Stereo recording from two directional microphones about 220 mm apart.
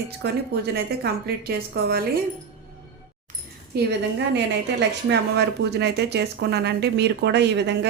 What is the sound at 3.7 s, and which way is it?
Speech, 45° right (ahead or behind).